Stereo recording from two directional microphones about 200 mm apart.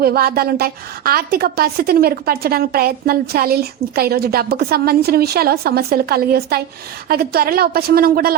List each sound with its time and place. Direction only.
0.0 s a woman's voice: 50° right (ahead or behind)